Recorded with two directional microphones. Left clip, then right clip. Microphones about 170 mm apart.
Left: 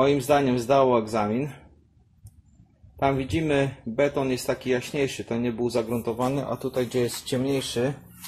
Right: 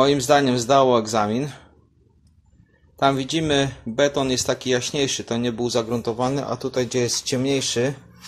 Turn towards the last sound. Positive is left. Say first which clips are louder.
# right 4 dB
turn(degrees=-15)  # may be behind; listen again after turning